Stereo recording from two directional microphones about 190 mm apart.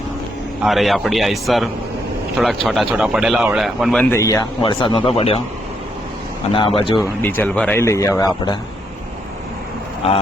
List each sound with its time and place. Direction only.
0.6 s speech: centre (ahead or behind)
4.1 s speech: 15° left (ahead or behind)
6.5 s speech: 30° left (ahead or behind)
7.2 s speech: 10° left (ahead or behind)